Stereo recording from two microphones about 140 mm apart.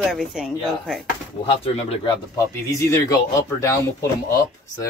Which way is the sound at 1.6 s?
45° left (ahead or behind).